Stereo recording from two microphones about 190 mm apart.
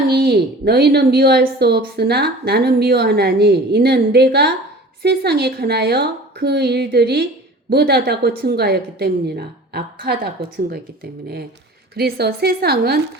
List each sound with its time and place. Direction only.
0.1 s speech: 60° right (ahead or behind)
11.9 s speech: 55° right (ahead or behind)